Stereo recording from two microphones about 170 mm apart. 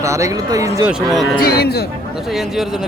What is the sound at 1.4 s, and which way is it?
Speech, 70° left (ahead or behind).